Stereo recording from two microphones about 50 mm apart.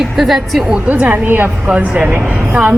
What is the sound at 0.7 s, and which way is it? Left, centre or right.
A woman's voice, right.